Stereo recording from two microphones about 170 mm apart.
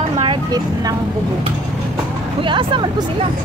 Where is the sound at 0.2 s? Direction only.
25° right (ahead or behind).